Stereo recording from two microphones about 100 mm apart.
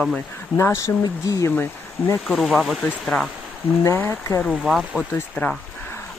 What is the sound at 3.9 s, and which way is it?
Speech, 25° left (ahead or behind).